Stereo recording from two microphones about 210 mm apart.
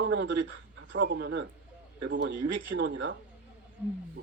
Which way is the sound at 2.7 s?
60° right (ahead or behind).